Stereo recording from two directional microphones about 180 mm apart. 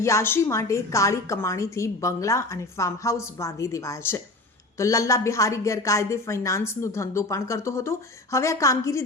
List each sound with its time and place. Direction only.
0.0 s a woman's voice: 15° left (ahead or behind)